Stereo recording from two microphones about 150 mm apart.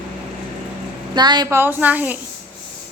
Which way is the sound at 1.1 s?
30° right (ahead or behind).